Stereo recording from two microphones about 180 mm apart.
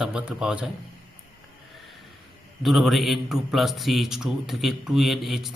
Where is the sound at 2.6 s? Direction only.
Centre (ahead or behind).